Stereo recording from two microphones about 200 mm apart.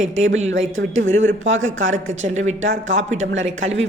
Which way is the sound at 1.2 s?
70° right (ahead or behind).